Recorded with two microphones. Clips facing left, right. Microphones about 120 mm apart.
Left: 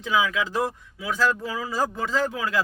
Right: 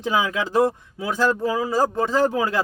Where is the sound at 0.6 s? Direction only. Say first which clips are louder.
Right 7 dB; 30° right (ahead or behind).